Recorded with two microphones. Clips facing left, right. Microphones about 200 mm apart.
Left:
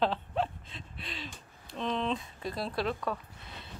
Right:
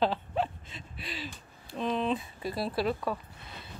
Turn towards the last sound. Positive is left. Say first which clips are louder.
# right 2 dB
turn(degrees=-5)  # may be behind; listen again after turning